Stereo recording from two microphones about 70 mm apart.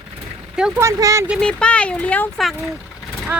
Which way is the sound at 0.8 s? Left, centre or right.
Right.